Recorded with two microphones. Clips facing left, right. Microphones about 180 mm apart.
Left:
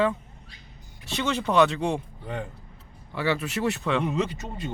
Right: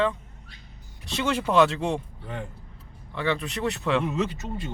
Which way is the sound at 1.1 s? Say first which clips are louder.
Right 1 dB; 5° right (ahead or behind).